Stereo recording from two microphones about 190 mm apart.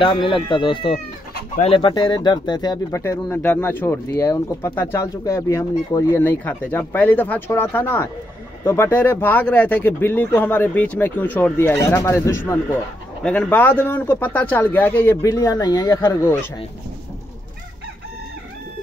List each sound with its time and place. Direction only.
0.0 s speech: 25° left (ahead or behind)